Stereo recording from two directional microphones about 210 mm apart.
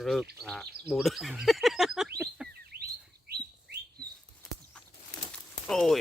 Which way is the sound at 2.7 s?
50° right (ahead or behind).